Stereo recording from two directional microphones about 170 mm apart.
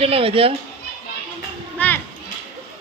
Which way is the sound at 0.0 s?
35° right (ahead or behind).